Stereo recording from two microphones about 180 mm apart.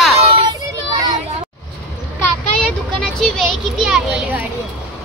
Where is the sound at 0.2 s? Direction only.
30° right (ahead or behind).